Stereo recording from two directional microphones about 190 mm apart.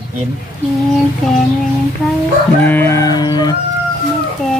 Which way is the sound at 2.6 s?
10° left (ahead or behind).